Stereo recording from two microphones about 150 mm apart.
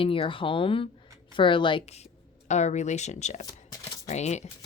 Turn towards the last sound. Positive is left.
turn(degrees=50)  # may be behind; listen again after turning